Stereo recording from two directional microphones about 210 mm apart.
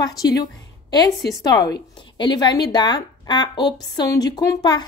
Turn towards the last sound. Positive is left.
turn(degrees=20)  # may be behind; listen again after turning